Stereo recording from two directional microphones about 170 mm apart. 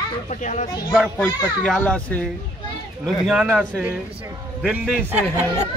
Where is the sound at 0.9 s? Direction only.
Centre (ahead or behind).